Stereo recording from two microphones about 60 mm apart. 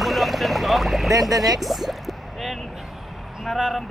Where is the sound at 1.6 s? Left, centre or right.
Centre.